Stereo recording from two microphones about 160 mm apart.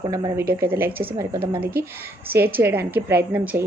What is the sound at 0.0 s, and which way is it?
A woman's voice, 25° right (ahead or behind).